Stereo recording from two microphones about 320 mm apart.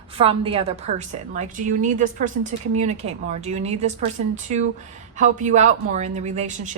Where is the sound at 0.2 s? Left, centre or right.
Centre.